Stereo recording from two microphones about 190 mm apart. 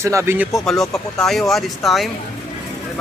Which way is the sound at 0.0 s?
15° right (ahead or behind).